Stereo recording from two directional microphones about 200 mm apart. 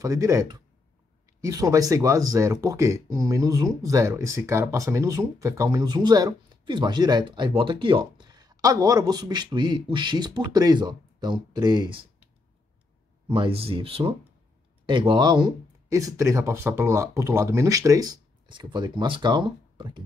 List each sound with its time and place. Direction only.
0.0 s speech: 15° right (ahead or behind)
13.3 s speech: 30° right (ahead or behind)